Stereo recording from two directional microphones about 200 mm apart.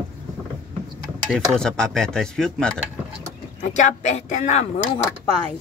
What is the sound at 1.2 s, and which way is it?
Speech, 5° left (ahead or behind).